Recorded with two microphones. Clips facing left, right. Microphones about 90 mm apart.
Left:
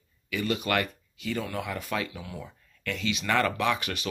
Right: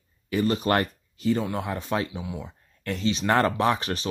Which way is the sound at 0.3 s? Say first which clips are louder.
Right 5 dB; 35° right (ahead or behind).